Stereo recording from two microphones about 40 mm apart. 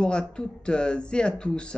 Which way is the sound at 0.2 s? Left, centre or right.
Centre.